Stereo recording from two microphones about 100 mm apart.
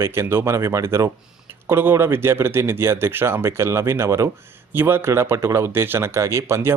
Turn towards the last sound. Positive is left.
turn(degrees=-25)  # may be behind; listen again after turning